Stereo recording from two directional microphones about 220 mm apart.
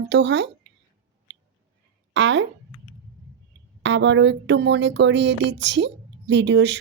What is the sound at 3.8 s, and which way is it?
Speech, 55° right (ahead or behind).